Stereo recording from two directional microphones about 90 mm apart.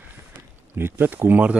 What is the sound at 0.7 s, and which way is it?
Speech, 25° right (ahead or behind).